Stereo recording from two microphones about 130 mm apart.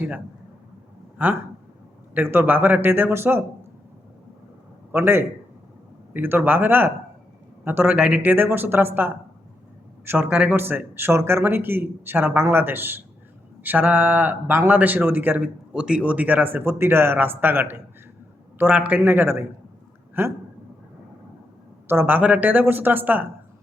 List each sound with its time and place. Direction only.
2.1 s speech: 15° right (ahead or behind)
4.9 s speech: 15° right (ahead or behind)
21.8 s speech: 15° right (ahead or behind)